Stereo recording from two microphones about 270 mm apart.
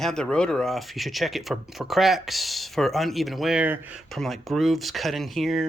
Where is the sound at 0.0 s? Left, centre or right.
Centre.